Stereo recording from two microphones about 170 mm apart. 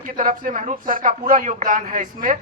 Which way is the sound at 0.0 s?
50° right (ahead or behind).